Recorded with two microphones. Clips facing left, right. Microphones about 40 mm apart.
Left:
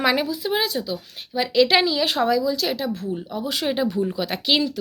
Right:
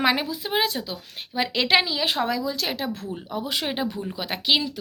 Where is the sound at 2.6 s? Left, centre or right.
Right.